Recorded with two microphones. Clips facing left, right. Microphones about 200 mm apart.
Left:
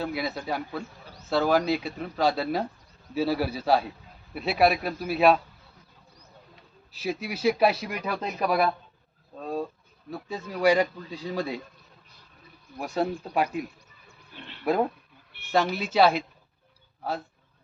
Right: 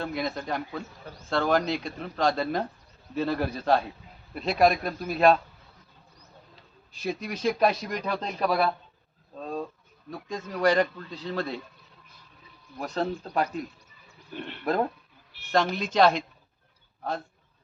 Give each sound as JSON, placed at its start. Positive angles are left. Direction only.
{"t": 0.0, "sound": "a man's voice", "side_deg": 5}
{"t": 6.9, "sound": "speech", "side_deg": 5}
{"t": 12.8, "sound": "speech", "side_deg": 10}
{"t": 14.3, "sound": "a sound", "side_deg": -55}
{"t": 15.5, "sound": "speech", "side_deg": 5}